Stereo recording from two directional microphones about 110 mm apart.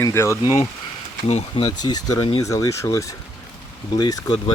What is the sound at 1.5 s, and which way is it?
Speech, 45° left (ahead or behind).